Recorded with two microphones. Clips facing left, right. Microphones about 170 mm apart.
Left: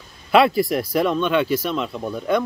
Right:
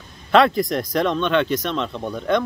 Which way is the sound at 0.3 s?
5° left (ahead or behind).